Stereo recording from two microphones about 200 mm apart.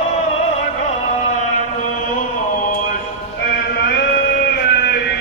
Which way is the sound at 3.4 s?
55° left (ahead or behind).